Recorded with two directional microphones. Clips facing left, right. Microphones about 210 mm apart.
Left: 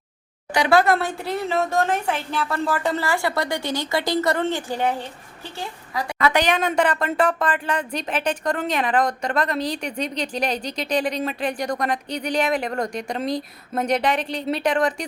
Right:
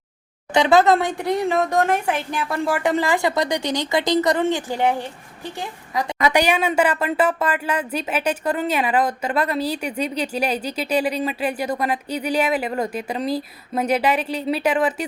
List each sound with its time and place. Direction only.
0.5 s a woman's voice: 20° right (ahead or behind); by 15.0 s 5° right (ahead or behind)